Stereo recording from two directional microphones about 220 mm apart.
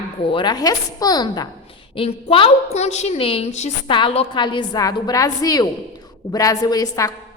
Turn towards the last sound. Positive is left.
turn(degrees=15)  # may be behind; listen again after turning